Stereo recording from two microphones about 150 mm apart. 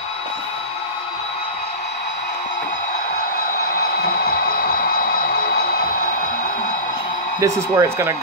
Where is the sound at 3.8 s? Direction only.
90° left.